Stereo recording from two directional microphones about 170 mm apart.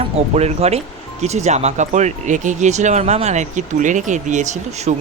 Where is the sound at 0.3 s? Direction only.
40° right (ahead or behind).